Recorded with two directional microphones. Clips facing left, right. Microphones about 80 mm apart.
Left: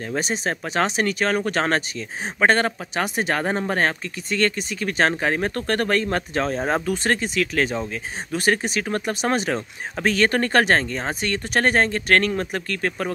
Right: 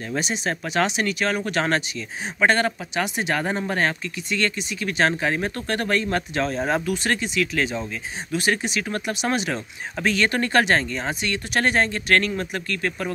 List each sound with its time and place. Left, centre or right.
0.1 s speech: left